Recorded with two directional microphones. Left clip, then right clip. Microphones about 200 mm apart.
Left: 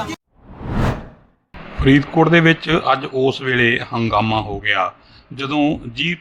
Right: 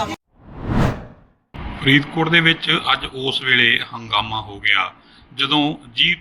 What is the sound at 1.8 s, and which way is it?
A man's voice, 40° left (ahead or behind).